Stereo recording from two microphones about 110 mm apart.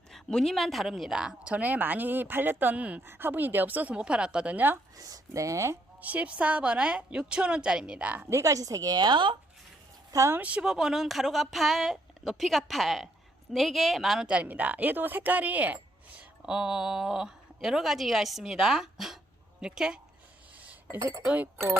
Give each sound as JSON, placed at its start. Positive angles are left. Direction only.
{"t": 0.1, "sound": "a woman's voice", "side_deg": 5}
{"t": 4.9, "sound": "speech", "side_deg": -35}
{"t": 6.0, "sound": "a woman's voice", "side_deg": -15}
{"t": 8.3, "sound": "a woman's voice", "side_deg": -30}
{"t": 10.1, "sound": "a woman's voice", "side_deg": -25}
{"t": 10.4, "sound": "a woman's voice", "side_deg": -10}
{"t": 20.6, "sound": "chink", "side_deg": -15}
{"t": 21.0, "sound": "speech", "side_deg": -25}
{"t": 21.2, "sound": "a woman's voice", "side_deg": -15}